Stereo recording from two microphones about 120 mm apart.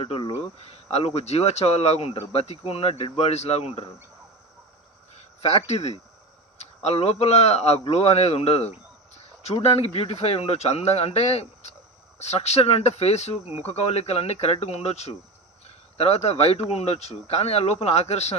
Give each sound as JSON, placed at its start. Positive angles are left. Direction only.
{"t": 0.0, "sound": "speech", "side_deg": 50}
{"t": 0.6, "sound": "speech", "side_deg": 60}
{"t": 5.4, "sound": "speech", "side_deg": 60}
{"t": 9.8, "sound": "speech", "side_deg": 55}